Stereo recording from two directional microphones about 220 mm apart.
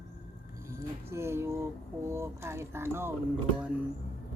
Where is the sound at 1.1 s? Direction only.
10° right (ahead or behind).